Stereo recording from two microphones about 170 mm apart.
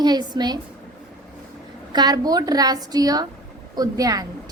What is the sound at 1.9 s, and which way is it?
A woman's voice, 25° right (ahead or behind).